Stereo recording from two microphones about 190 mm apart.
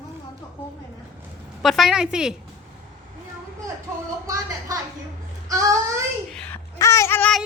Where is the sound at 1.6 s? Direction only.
Centre (ahead or behind).